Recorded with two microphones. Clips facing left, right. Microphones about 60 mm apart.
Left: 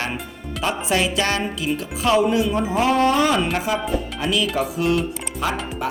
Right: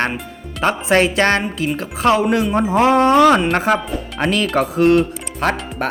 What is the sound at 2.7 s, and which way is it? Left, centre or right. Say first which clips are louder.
Speech: right 5 dB; right.